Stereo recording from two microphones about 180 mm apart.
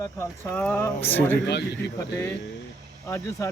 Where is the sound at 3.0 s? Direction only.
15° left (ahead or behind).